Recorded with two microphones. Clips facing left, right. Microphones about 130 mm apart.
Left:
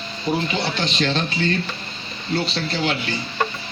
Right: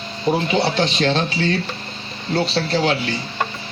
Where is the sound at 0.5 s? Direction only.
65° right (ahead or behind).